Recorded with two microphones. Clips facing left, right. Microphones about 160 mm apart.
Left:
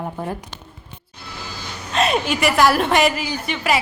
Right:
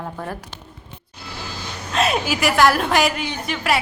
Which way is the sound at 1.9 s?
Centre (ahead or behind).